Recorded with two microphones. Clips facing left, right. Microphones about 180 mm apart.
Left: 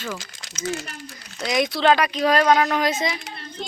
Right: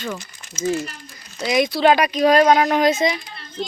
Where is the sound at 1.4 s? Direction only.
Centre (ahead or behind).